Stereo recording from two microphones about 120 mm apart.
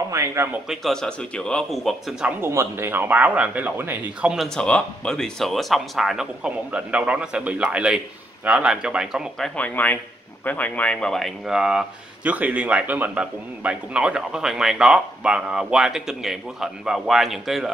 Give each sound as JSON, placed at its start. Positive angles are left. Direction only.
{"t": 0.1, "sound": "a man's voice", "side_deg": -25}
{"t": 0.7, "sound": "speech", "side_deg": 5}
{"t": 2.4, "sound": "speech", "side_deg": -20}
{"t": 4.6, "sound": "speech", "side_deg": 5}
{"t": 9.6, "sound": "speech", "side_deg": 15}